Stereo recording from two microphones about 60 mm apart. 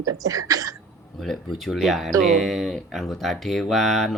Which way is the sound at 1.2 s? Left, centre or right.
Centre.